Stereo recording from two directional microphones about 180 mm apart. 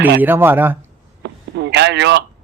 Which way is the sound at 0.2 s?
10° right (ahead or behind).